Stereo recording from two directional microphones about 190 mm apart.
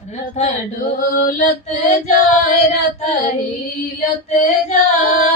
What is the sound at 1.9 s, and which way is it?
Female singing, 40° left (ahead or behind).